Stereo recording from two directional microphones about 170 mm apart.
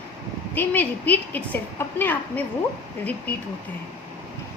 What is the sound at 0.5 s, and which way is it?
A woman's voice, 10° left (ahead or behind).